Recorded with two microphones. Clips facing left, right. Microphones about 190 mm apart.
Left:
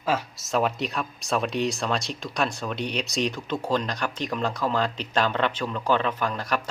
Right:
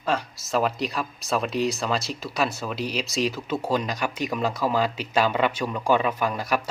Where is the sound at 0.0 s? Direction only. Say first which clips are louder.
Even; centre (ahead or behind).